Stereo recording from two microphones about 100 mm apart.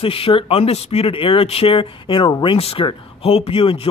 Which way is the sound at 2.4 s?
70° left (ahead or behind).